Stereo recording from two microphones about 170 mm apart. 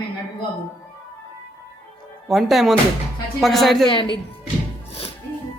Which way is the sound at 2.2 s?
Centre (ahead or behind).